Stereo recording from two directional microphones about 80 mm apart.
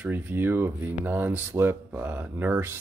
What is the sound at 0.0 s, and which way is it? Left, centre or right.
Speech, right.